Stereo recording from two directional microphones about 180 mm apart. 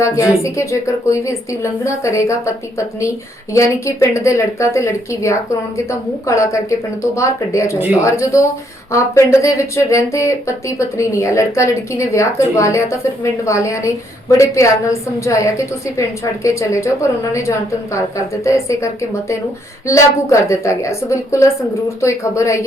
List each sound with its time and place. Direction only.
0.0 s a woman's voice: 15° left (ahead or behind)
3.5 s a woman's voice: 15° left (ahead or behind)
19.9 s a woman's voice: 15° left (ahead or behind)